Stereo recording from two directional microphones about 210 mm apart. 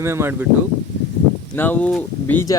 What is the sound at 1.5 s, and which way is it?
Speech, 10° left (ahead or behind).